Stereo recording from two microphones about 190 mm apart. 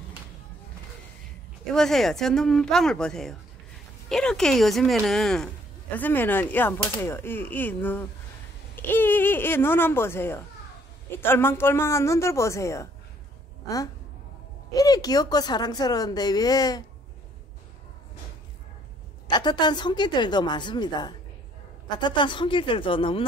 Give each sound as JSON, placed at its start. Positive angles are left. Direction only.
{"t": 1.7, "sound": "speech", "side_deg": 0}
{"t": 14.7, "sound": "speech", "side_deg": 20}
{"t": 19.2, "sound": "speech", "side_deg": 25}